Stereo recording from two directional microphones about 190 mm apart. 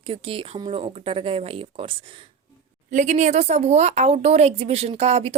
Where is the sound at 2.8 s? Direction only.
40° right (ahead or behind).